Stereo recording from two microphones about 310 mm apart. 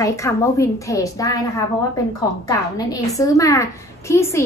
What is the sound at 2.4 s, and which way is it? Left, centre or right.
A woman's voice, centre.